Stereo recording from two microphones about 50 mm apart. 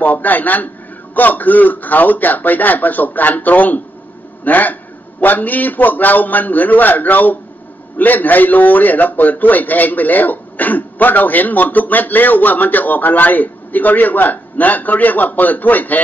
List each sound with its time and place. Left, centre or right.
0.0 s a man's voice: left